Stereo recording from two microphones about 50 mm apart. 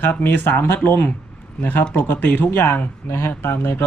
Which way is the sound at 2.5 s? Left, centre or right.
Left.